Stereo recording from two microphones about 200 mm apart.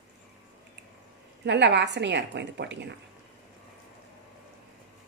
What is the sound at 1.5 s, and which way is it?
A woman's voice, 60° right (ahead or behind).